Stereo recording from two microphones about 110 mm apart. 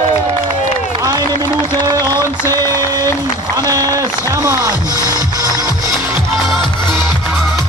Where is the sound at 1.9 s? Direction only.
35° right (ahead or behind).